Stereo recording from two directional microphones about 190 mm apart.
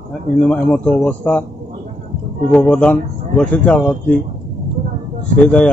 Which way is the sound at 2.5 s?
5° left (ahead or behind).